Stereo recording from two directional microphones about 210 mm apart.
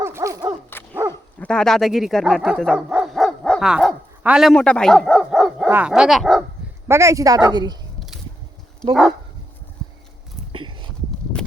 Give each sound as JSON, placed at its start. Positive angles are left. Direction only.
{"t": 0.0, "sound": "dog", "side_deg": -15}
{"t": 0.7, "sound": "dog", "side_deg": 10}
{"t": 1.4, "sound": "speech", "side_deg": 5}
{"t": 6.8, "sound": "speech", "side_deg": -15}
{"t": 10.5, "sound": "a sound", "side_deg": -25}